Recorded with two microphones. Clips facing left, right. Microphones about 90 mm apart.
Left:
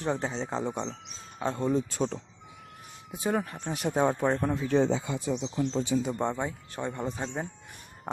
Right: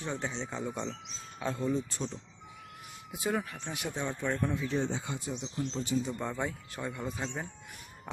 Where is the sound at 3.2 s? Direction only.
35° left (ahead or behind).